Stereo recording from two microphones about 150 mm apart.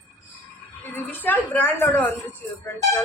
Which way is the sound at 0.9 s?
15° left (ahead or behind).